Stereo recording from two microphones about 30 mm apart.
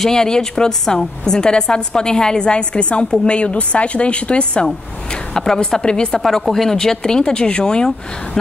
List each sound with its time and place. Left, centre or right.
0.1 s a woman's voice: left
5.3 s a woman's voice: centre
6.4 s a woman's voice: centre; by 7.9 s left